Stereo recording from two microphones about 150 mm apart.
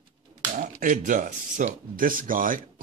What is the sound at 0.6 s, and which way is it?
Speech, 60° right (ahead or behind).